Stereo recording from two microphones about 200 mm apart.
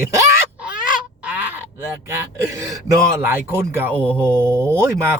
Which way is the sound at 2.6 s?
15° right (ahead or behind).